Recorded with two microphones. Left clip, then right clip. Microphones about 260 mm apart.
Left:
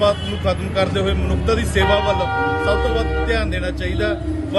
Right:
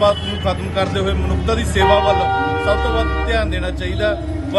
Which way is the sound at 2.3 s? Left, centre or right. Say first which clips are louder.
Right 2 dB; right.